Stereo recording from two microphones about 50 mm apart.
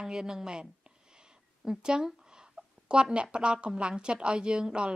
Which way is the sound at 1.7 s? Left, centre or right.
Centre.